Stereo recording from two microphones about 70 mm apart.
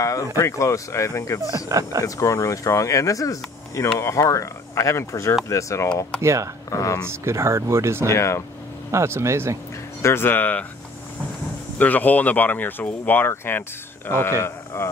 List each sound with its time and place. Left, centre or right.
0.0 s speech: left
1.5 s speech: right
2.0 s speech: left
6.2 s speech: right
6.7 s speech: left
7.1 s speech: right
8.1 s speech: left
8.9 s speech: right
10.0 s speech: left
11.8 s speech: left